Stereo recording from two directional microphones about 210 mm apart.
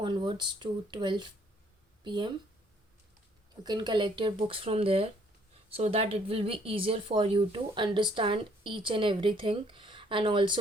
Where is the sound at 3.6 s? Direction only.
20° right (ahead or behind).